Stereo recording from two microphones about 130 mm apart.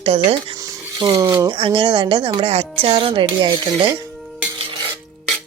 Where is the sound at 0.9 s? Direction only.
30° right (ahead or behind).